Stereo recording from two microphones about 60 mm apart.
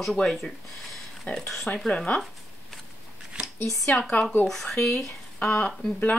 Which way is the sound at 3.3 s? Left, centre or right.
Centre.